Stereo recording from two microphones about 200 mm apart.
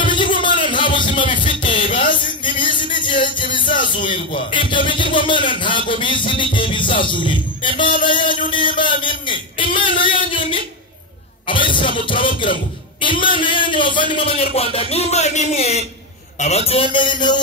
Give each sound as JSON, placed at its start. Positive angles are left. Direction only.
{"t": 0.0, "sound": "music", "side_deg": 25}
{"t": 3.8, "sound": "speech", "side_deg": 25}
{"t": 8.5, "sound": "a sound", "side_deg": 25}
{"t": 11.4, "sound": "music", "side_deg": 25}
{"t": 13.0, "sound": "speech", "side_deg": 25}